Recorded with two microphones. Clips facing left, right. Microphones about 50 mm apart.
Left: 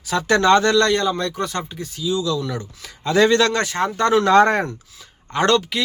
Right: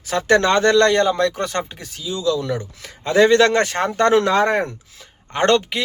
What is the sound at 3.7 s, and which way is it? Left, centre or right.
Speech, right.